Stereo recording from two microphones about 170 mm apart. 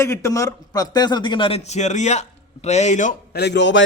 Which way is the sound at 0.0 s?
15° left (ahead or behind).